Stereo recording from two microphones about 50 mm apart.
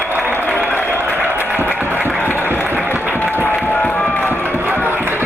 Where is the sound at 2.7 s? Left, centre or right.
Right.